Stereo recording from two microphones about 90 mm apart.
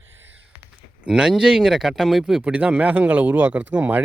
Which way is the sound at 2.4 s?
15° right (ahead or behind).